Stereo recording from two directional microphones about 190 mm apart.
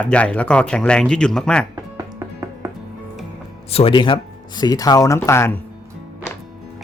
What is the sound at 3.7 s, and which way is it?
Speech, 30° left (ahead or behind).